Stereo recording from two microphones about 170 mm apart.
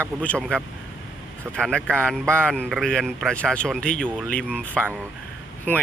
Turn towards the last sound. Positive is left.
turn(degrees=10)  # may be behind; listen again after turning